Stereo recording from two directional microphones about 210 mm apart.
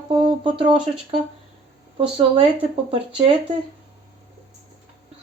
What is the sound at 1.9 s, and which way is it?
Speech, 25° right (ahead or behind).